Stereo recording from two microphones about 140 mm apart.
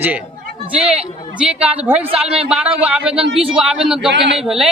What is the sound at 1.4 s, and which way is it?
A man's voice, 5° right (ahead or behind).